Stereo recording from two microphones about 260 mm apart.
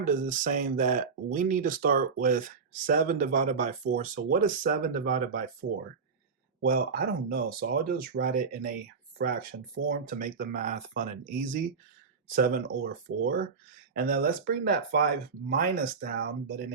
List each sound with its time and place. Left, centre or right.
0.0 s speech: right
6.6 s speech: right